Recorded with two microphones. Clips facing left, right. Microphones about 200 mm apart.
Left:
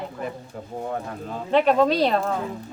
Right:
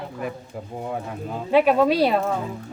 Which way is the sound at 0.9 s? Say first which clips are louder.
Right 3 dB; 10° right (ahead or behind).